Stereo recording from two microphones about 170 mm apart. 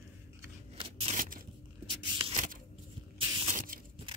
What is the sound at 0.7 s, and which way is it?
Scissors, 35° right (ahead or behind).